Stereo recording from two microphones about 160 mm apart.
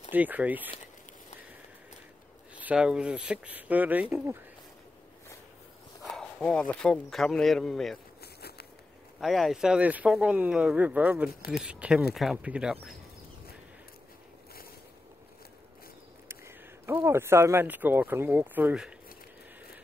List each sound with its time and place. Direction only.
0.1 s speech: 10° right (ahead or behind)
2.6 s speech: 5° right (ahead or behind)
6.0 s speech: 5° left (ahead or behind)
8.2 s a sound: 80° left
9.2 s speech: centre (ahead or behind)
16.3 s speech: 15° right (ahead or behind)